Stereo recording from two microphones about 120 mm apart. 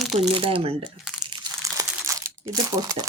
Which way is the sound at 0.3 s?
50° right (ahead or behind).